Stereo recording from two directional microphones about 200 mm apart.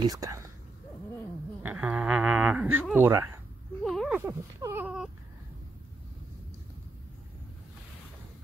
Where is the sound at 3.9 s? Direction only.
Centre (ahead or behind).